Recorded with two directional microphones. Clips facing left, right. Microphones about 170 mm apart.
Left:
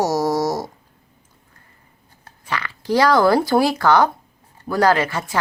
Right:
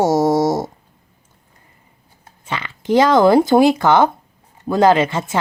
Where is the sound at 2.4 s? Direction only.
20° right (ahead or behind).